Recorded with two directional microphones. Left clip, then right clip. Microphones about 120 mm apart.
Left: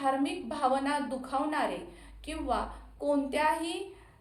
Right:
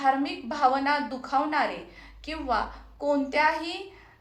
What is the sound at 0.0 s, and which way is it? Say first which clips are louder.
A woman's voice: right 5 dB; 25° left (ahead or behind).